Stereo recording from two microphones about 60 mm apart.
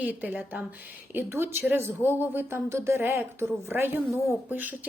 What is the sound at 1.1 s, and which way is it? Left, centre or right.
A woman's voice, right.